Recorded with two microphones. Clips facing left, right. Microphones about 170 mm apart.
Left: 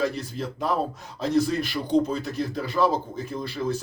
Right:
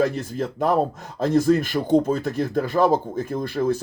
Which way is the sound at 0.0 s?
50° right (ahead or behind).